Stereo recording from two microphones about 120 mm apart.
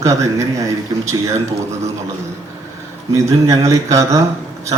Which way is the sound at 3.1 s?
25° right (ahead or behind).